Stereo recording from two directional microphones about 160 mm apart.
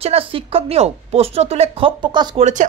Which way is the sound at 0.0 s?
35° right (ahead or behind).